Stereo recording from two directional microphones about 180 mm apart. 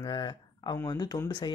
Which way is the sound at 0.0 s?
25° left (ahead or behind).